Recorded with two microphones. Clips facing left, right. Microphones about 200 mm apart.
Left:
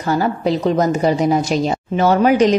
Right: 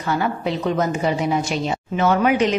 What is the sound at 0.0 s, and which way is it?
A woman's voice, 40° left (ahead or behind).